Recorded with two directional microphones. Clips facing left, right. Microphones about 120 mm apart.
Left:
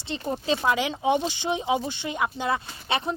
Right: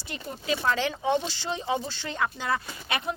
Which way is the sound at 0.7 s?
15° left (ahead or behind).